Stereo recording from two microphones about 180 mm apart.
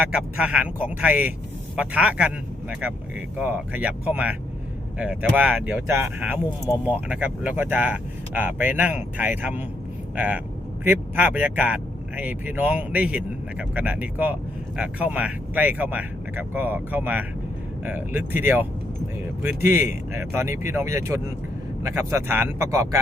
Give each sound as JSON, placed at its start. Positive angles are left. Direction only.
{"t": 0.0, "sound": "speech", "side_deg": -5}